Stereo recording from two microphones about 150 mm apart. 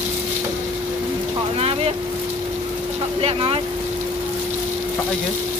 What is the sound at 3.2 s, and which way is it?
Speech, 40° right (ahead or behind).